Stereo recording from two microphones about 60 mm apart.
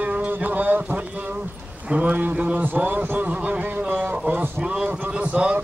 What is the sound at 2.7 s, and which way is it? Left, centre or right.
A man's voice, right.